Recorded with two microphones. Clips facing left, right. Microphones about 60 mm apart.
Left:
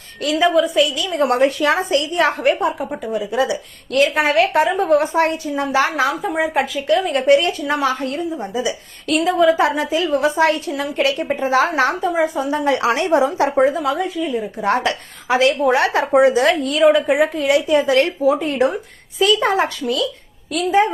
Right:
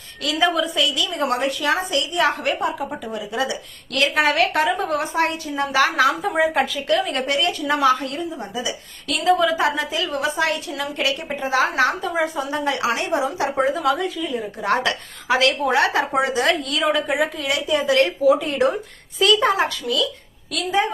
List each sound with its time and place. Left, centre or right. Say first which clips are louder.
0.3 s a woman's voice: left 5 dB; centre
0.6 s a woman's voice: left 5 dB; left
6.2 s a woman's voice: even; centre
7.2 s a woman's voice: left 7 dB; left
12.1 s a woman's voice: left 4 dB; left
12.9 s a woman's voice: left 6 dB; left
13.2 s a woman's voice: left 6 dB; left
13.7 s speech: even; centre
14.0 s a woman's voice: left 4 dB; left
17.2 s a woman's voice: left 7 dB; left